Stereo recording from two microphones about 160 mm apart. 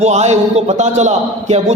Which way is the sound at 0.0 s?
45° right (ahead or behind).